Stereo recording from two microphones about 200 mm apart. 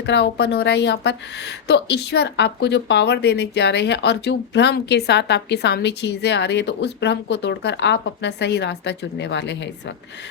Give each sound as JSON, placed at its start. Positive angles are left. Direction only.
{"t": 0.0, "sound": "speech", "side_deg": 60}